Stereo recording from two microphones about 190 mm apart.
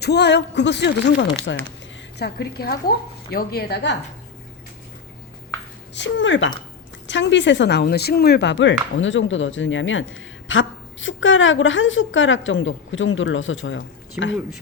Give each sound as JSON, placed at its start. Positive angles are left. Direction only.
{"t": 0.0, "sound": "speech", "side_deg": 60}
{"t": 5.9, "sound": "a woman's voice", "side_deg": 70}